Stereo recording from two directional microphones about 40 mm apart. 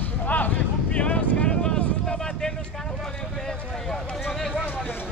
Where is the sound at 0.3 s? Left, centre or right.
Left.